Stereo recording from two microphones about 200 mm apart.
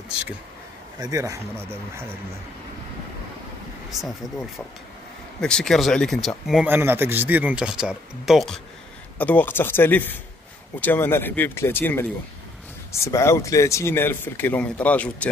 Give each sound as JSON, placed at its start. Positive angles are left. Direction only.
{"t": 0.9, "sound": "speech", "side_deg": -15}
{"t": 3.9, "sound": "speech", "side_deg": 0}